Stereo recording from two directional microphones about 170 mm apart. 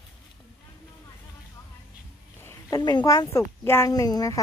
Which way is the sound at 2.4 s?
20° left (ahead or behind).